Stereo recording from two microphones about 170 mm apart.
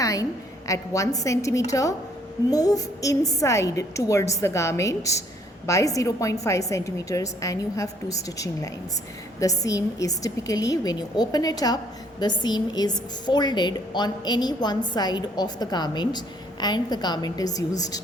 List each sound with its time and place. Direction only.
0.0 s a woman's voice: 20° left (ahead or behind)